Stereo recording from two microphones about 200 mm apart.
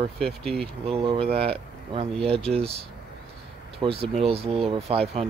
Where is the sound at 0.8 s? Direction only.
30° right (ahead or behind).